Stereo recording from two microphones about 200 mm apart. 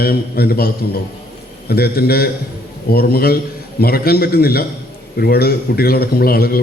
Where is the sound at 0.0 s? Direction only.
50° left (ahead or behind).